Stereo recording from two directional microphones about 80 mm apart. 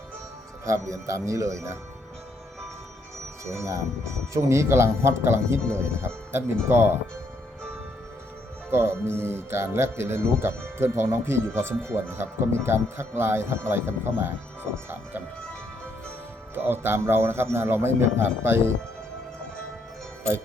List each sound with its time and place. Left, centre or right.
0.6 s speech: right
3.6 s speech: right
8.7 s speech: right
16.6 s speech: right